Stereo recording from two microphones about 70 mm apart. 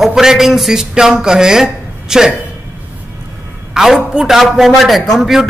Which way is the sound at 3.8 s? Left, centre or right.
Centre.